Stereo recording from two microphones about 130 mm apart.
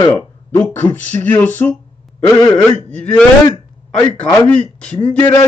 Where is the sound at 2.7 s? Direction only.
10° left (ahead or behind).